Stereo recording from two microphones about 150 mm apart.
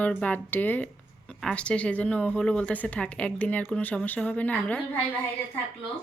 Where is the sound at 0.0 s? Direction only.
10° left (ahead or behind).